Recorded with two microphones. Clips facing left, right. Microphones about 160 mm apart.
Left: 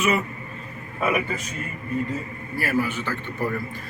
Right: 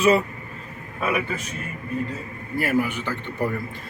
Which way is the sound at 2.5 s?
15° right (ahead or behind).